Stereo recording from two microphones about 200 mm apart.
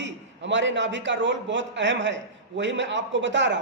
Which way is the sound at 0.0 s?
65° right (ahead or behind).